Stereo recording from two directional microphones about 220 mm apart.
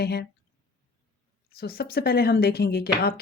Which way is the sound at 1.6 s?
45° left (ahead or behind).